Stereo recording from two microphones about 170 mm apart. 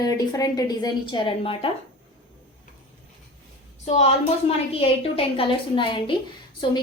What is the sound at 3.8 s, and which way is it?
A woman's voice, 40° left (ahead or behind).